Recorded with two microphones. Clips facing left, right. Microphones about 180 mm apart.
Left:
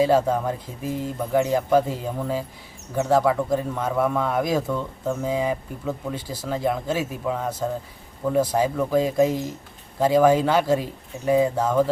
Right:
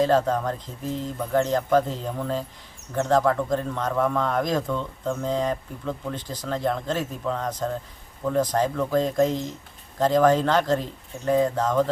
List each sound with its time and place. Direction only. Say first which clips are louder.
0.0 s a man's voice: left 2 dB; 10° left (ahead or behind)